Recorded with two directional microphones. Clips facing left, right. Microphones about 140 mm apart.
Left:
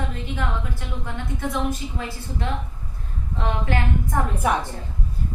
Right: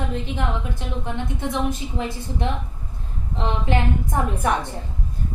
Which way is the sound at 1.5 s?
20° right (ahead or behind).